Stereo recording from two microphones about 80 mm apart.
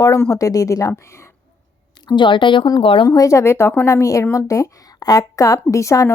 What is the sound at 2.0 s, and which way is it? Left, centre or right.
Speech, left.